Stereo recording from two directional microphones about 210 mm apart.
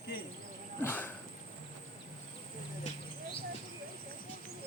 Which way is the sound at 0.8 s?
10° left (ahead or behind).